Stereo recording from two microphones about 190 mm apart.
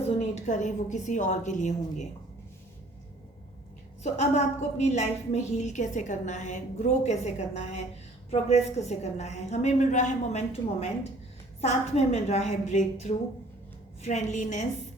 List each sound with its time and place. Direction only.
0.2 s a woman's voice: 35° left (ahead or behind)
4.0 s a woman's voice: 35° left (ahead or behind)
8.3 s a woman's voice: 35° left (ahead or behind)